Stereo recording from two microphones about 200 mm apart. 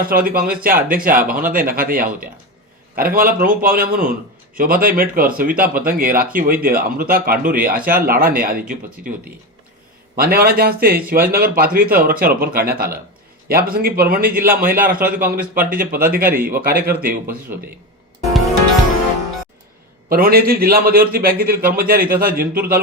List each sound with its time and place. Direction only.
0.0 s speech: 45° right (ahead or behind)
10.2 s speech: 50° right (ahead or behind)
20.1 s speech: 45° right (ahead or behind)